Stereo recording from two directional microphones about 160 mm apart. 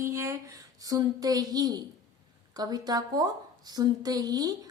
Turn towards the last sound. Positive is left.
turn(degrees=-25)  # may be behind; listen again after turning